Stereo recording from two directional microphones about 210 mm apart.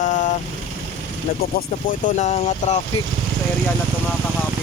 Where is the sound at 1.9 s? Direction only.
35° left (ahead or behind).